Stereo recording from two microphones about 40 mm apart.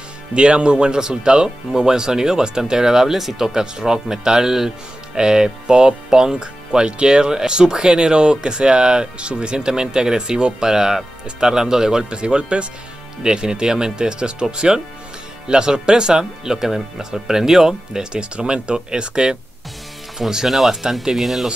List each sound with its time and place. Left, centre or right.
0.3 s speech: right
18.3 s speech: right
20.4 s speech: centre